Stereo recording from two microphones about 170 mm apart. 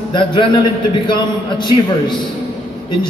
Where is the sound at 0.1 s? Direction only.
30° left (ahead or behind).